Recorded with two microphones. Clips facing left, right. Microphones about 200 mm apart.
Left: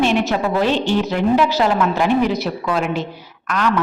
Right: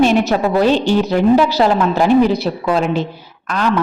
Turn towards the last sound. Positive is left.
turn(degrees=-30)  # may be behind; listen again after turning